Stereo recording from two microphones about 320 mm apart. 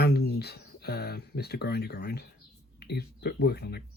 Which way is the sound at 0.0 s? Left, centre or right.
Left.